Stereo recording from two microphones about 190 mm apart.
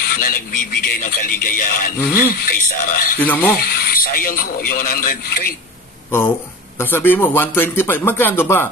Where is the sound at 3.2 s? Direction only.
10° left (ahead or behind).